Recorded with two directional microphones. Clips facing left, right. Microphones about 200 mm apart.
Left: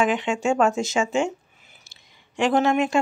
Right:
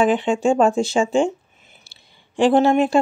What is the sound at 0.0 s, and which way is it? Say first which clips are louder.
Speech: right 5 dB; 35° right (ahead or behind).